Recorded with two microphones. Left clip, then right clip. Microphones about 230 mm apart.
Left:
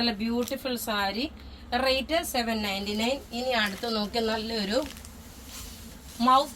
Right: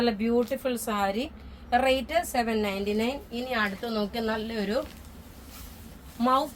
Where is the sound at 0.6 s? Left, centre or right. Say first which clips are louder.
Right 1 dB; right; by 4.6 s centre.